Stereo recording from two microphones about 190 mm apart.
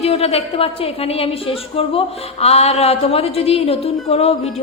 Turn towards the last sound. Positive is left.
turn(degrees=30)  # may be behind; listen again after turning